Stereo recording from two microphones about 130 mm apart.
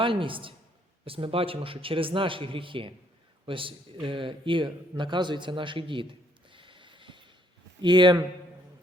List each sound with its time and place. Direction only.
0.0 s a woman's voice: 40° right (ahead or behind)